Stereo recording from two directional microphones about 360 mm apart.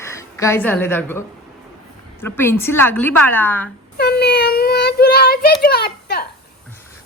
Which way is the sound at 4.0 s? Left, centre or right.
Left.